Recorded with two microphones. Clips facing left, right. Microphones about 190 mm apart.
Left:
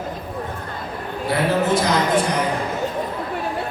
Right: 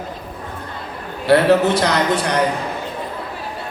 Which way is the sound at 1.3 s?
70° right (ahead or behind).